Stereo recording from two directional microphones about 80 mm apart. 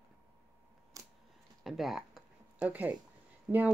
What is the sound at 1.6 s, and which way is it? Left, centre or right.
Speech, centre.